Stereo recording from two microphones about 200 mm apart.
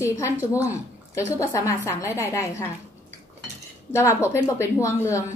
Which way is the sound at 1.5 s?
15° left (ahead or behind).